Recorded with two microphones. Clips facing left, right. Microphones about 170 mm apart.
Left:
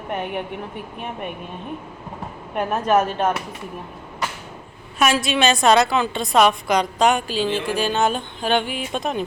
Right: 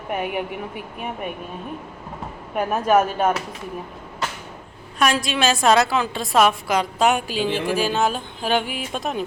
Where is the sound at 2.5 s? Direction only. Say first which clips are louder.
Right 1 dB; centre (ahead or behind).